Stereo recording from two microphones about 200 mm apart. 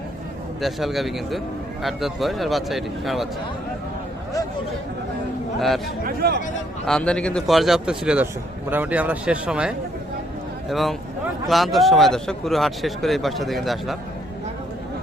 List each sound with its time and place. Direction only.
0.6 s a man's voice: centre (ahead or behind)
5.5 s a man's voice: centre (ahead or behind)
6.1 s speech: 50° right (ahead or behind)
6.8 s a man's voice: 5° left (ahead or behind)